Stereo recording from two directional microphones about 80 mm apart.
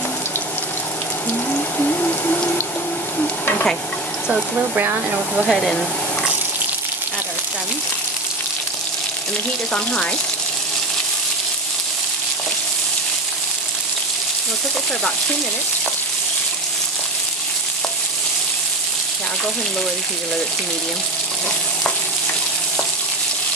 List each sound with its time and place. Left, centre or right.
1.5 s a sound: left
3.2 s stir: left
5.3 s speech: centre